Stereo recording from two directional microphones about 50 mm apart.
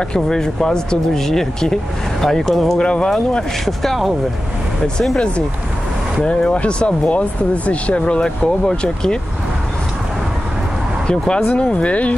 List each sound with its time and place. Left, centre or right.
0.1 s speech: centre
2.8 s speech: centre
3.1 s speech: centre
6.5 s speech: left
11.1 s speech: centre